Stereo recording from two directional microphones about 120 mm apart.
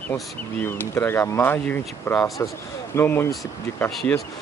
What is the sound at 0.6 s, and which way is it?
Speech, 15° left (ahead or behind).